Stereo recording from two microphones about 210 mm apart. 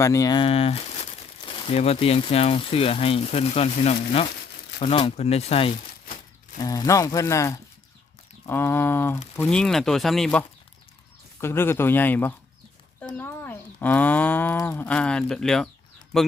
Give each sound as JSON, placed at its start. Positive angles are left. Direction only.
{"t": 0.0, "sound": "speech", "side_deg": 15}
{"t": 6.6, "sound": "moo", "side_deg": 15}
{"t": 9.3, "sound": "speech", "side_deg": 5}
{"t": 11.3, "sound": "moo", "side_deg": 10}
{"t": 16.1, "sound": "speech", "side_deg": 0}